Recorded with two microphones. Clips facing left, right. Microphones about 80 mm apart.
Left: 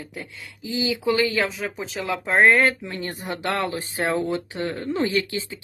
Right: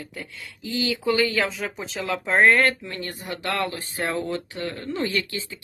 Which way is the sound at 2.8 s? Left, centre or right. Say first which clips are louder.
Left 3 dB; centre.